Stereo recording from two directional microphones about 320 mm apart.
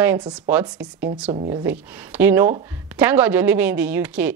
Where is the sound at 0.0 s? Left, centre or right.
Centre.